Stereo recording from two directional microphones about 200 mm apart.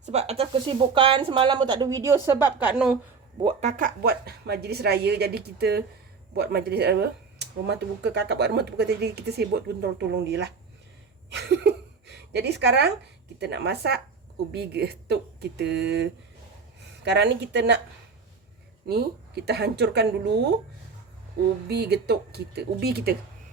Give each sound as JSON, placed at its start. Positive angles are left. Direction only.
{"t": 0.0, "sound": "speech", "side_deg": -35}
{"t": 2.6, "sound": "a woman's voice", "side_deg": -5}
{"t": 3.4, "sound": "a woman's voice", "side_deg": -35}
{"t": 18.9, "sound": "speech", "side_deg": -55}
{"t": 21.7, "sound": "speech", "side_deg": -55}